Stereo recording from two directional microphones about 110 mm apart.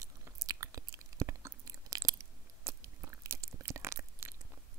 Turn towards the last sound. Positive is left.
turn(degrees=-25)  # may be behind; listen again after turning